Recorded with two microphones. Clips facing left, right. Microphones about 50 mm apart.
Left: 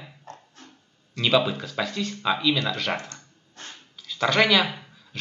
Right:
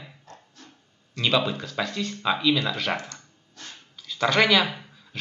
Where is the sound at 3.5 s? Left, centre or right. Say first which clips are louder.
Left 1 dB; left.